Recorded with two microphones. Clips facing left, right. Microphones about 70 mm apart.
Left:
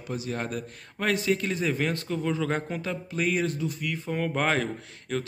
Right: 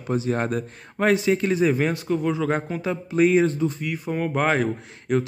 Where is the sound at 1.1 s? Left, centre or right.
Centre.